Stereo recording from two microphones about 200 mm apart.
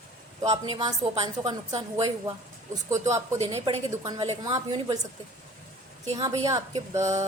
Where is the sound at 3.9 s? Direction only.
20° right (ahead or behind).